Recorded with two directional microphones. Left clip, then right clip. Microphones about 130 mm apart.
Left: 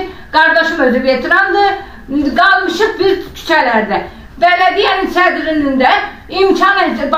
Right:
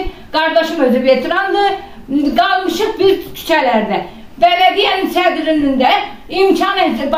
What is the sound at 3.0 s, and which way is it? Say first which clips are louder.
A woman's voice: right 1 dB; 10° right (ahead or behind).